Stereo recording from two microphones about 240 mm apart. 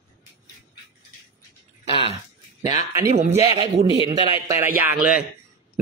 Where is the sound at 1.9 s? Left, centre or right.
Right.